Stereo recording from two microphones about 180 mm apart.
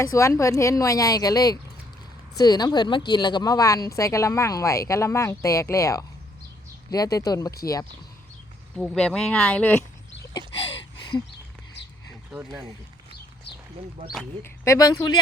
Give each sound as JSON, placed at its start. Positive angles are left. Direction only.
{"t": 0.0, "sound": "a woman's voice", "side_deg": 15}
{"t": 8.7, "sound": "speech", "side_deg": 5}
{"t": 10.5, "sound": "a sound", "side_deg": 30}
{"t": 14.4, "sound": "a woman's voice", "side_deg": 15}